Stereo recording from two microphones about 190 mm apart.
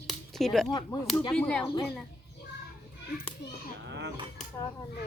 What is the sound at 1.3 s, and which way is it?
Speech, 5° left (ahead or behind).